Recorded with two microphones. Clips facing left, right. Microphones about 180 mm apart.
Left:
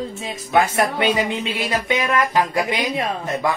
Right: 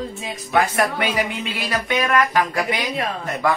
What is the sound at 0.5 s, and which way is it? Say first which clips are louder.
Speech: left 1 dB; 25° left (ahead or behind).